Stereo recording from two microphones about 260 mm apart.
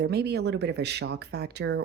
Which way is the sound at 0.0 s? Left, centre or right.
Right.